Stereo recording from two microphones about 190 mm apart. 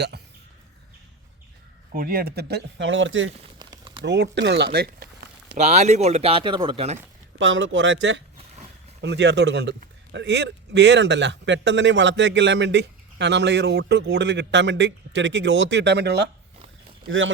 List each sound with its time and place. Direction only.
1.9 s speech: 50° right (ahead or behind); by 3.3 s 80° right
3.6 s a sound: 25° right (ahead or behind)
4.0 s speech: 65° right (ahead or behind)
5.5 s speech: 35° right (ahead or behind)
7.3 s a man's voice: 80° right; by 16.3 s 60° right (ahead or behind)
17.1 s speech: 90° right